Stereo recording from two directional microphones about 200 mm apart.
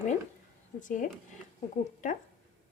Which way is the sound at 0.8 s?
40° left (ahead or behind).